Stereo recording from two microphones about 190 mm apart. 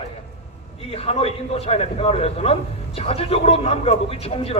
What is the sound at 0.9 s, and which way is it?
A man's voice, 30° left (ahead or behind).